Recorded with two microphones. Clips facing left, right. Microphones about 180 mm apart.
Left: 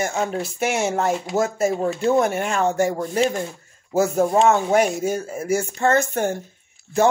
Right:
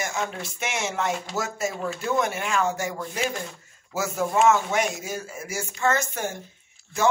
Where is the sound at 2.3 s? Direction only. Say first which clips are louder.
Left 4 dB; 45° left (ahead or behind).